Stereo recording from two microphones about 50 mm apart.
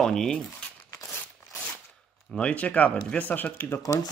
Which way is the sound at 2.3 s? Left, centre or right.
Left.